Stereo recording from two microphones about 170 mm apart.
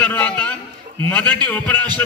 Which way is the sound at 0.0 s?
10° left (ahead or behind).